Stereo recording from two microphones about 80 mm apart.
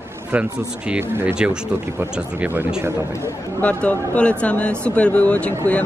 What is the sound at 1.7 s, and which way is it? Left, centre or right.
Speech, right.